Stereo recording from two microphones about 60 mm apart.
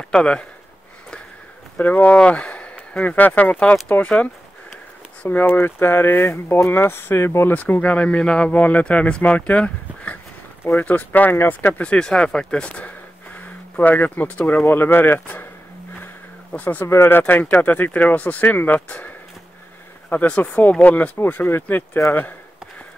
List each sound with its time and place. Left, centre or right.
0.0 s speech: centre
1.8 s speech: left
5.2 s speech: left
7.8 s speech: left
8.5 s speech: left
11.8 s speech: centre
12.8 s a sound: left
14.6 s speech: left
16.5 s speech: left
16.8 s speech: left
17.3 s speech: left
20.4 s speech: centre
21.2 s speech: left